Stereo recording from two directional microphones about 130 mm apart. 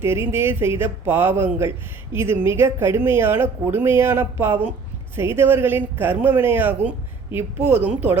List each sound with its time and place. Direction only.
0.0 s speech: 20° right (ahead or behind)